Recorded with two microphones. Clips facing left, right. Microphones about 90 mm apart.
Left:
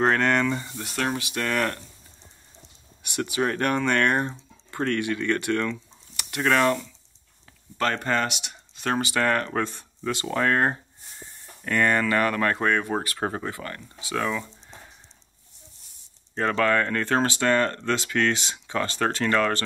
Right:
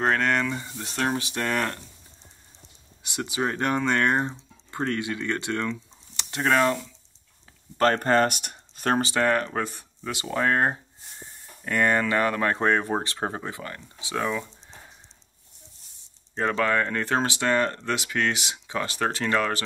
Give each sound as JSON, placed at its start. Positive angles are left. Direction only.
{"t": 0.0, "sound": "speech", "side_deg": 0}
{"t": 0.8, "sound": "speech", "side_deg": -25}
{"t": 3.0, "sound": "speech", "side_deg": -20}
{"t": 7.7, "sound": "speech", "side_deg": -40}
{"t": 9.1, "sound": "speech", "side_deg": -15}
{"t": 13.2, "sound": "speech", "side_deg": -10}
{"t": 16.3, "sound": "speech", "side_deg": -10}